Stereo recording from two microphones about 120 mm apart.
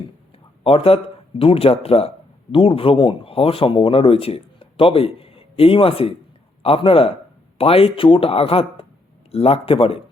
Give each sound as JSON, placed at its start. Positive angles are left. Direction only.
{"t": 0.6, "sound": "speech", "side_deg": 50}